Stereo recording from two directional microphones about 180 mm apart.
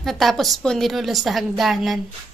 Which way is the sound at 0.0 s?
Centre (ahead or behind).